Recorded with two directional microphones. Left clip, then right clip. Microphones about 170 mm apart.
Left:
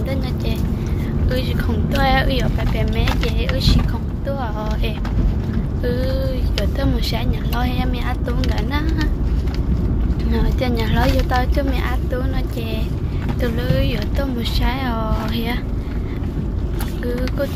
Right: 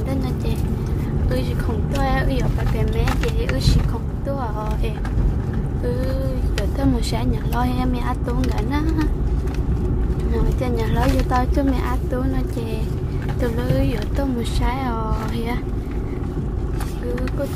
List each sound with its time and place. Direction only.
2.0 s a woman's voice: 15° right (ahead or behind)
6.8 s a woman's voice: 25° right (ahead or behind)
10.3 s speech: 15° right (ahead or behind)
13.4 s a woman's voice: 25° right (ahead or behind)